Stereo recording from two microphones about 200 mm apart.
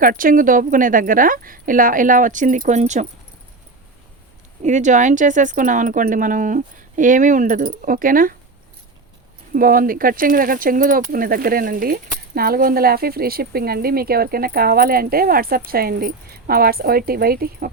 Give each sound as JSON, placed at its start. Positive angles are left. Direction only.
{"t": 0.0, "sound": "speech", "side_deg": -45}
{"t": 4.6, "sound": "speech", "side_deg": -35}
{"t": 9.5, "sound": "speech", "side_deg": -45}